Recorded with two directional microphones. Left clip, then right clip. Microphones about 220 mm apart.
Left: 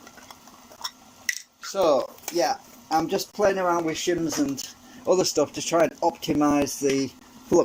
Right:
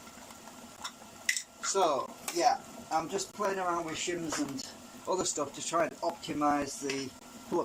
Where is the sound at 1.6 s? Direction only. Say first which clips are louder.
Left 7 dB; 40° left (ahead or behind).